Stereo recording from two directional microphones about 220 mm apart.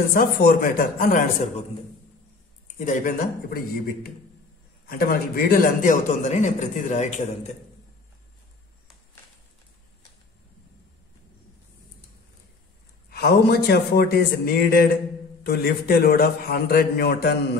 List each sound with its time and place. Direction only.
0.1 s a man's voice: 40° left (ahead or behind)
2.8 s a man's voice: 35° left (ahead or behind)
13.1 s a man's voice: 45° left (ahead or behind)